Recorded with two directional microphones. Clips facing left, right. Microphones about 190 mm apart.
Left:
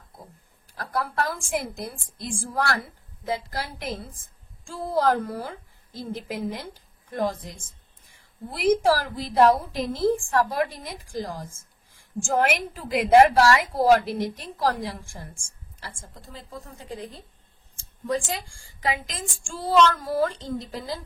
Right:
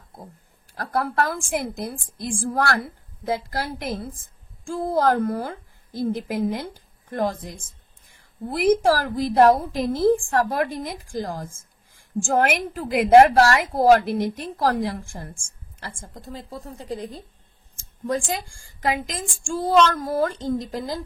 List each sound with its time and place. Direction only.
0.7 s a woman's voice: 55° right (ahead or behind)
8.5 s a woman's voice: 50° right (ahead or behind)
16.3 s speech: 40° right (ahead or behind)
18.8 s a woman's voice: 45° right (ahead or behind)